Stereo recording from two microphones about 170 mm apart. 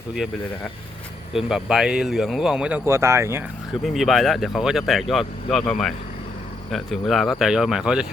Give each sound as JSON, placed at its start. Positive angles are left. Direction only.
{"t": 1.3, "sound": "speech", "side_deg": 0}
{"t": 3.8, "sound": "speech", "side_deg": 0}